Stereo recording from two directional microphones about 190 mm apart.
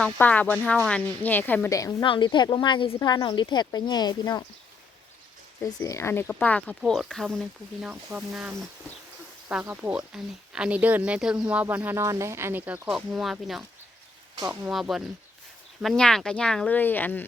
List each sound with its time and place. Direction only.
0.0 s a woman's voice: 10° left (ahead or behind)
5.6 s speech: 15° left (ahead or behind); by 13.7 s 5° right (ahead or behind)
14.3 s speech: 15° right (ahead or behind); by 17.2 s 10° left (ahead or behind)